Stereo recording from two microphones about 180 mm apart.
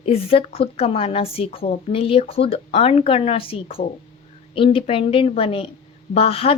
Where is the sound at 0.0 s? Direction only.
35° left (ahead or behind).